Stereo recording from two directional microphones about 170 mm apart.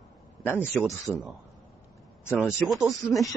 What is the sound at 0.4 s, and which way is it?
Speech, 10° left (ahead or behind).